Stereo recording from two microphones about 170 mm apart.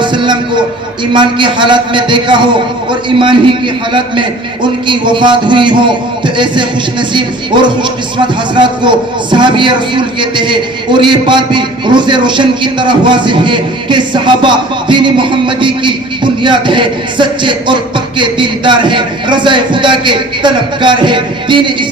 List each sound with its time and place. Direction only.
0.0 s music: 25° right (ahead or behind)
1.1 s a man's voice: 25° right (ahead or behind)